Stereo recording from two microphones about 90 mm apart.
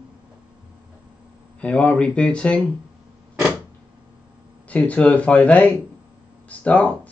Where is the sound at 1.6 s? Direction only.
15° left (ahead or behind).